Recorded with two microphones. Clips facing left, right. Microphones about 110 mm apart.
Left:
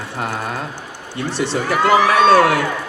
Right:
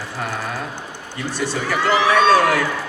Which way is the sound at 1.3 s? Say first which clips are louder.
Left 2 dB; 80° left.